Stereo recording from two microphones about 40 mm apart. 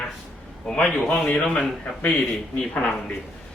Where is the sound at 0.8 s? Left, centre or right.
Left.